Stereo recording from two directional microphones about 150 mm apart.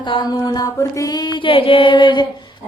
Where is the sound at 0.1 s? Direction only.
30° left (ahead or behind).